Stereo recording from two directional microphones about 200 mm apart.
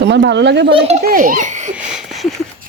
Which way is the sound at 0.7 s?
30° right (ahead or behind).